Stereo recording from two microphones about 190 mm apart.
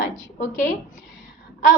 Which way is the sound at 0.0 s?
40° left (ahead or behind).